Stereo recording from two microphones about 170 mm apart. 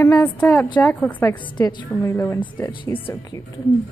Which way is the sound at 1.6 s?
25° left (ahead or behind).